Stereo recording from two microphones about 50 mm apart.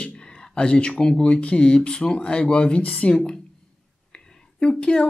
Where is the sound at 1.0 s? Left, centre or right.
Centre.